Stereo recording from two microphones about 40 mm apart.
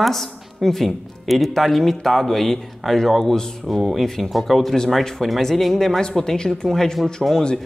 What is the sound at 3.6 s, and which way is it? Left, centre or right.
A man's voice, centre.